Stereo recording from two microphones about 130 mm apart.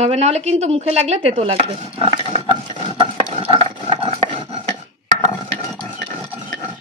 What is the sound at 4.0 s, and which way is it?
Dog, 45° right (ahead or behind).